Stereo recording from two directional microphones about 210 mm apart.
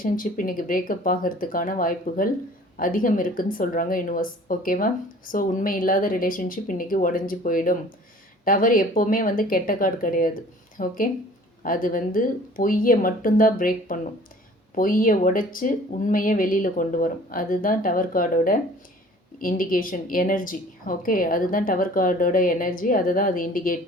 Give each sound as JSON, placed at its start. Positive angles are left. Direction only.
{"t": 0.0, "sound": "a woman's voice", "side_deg": 40}